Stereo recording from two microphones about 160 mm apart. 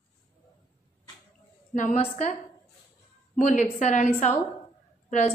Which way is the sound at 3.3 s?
45° left (ahead or behind).